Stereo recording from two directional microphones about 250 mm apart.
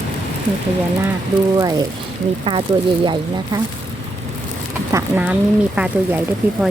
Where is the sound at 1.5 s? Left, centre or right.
Centre.